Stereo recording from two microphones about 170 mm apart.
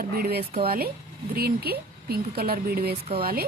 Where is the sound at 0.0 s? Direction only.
60° right (ahead or behind).